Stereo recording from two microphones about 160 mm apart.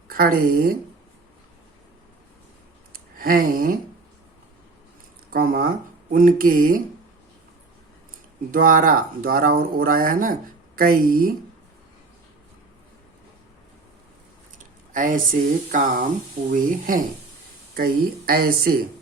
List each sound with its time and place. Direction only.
0.1 s speech: 65° right (ahead or behind)
2.9 s a sound: 65° right (ahead or behind)
5.3 s speech: 60° right (ahead or behind)
8.4 s speech: 60° right (ahead or behind)
14.9 s speech: 60° right (ahead or behind)
17.7 s speech: 70° right (ahead or behind)